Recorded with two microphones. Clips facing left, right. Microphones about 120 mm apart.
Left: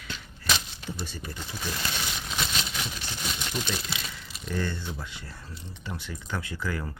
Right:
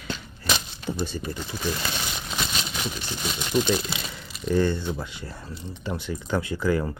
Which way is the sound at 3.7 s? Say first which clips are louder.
Right 8 dB; 25° right (ahead or behind).